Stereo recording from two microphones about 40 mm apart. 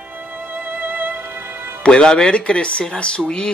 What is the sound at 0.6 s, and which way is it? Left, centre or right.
Music, right.